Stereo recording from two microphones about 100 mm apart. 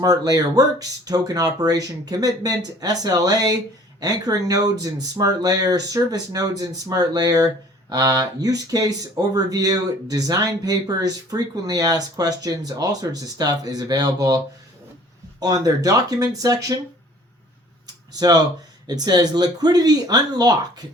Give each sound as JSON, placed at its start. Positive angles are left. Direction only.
{"t": 0.0, "sound": "speech", "side_deg": -40}
{"t": 18.1, "sound": "speech", "side_deg": -40}